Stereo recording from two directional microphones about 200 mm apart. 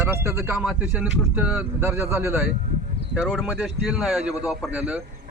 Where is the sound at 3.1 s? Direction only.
Centre (ahead or behind).